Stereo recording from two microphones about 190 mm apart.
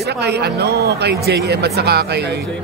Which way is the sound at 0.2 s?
60° right (ahead or behind).